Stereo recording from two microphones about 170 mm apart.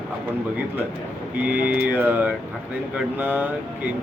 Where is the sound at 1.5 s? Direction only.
10° right (ahead or behind).